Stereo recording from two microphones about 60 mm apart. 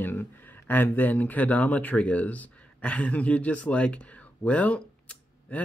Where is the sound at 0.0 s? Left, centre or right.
Left.